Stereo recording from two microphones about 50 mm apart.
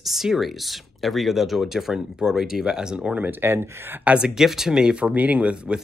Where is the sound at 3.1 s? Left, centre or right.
Right.